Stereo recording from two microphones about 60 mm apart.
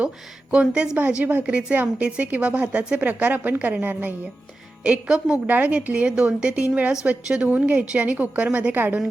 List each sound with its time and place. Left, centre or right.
0.5 s a woman's voice: centre
1.2 s a woman's voice: right